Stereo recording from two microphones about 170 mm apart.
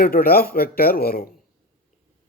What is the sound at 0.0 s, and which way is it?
A man's voice, 60° left (ahead or behind).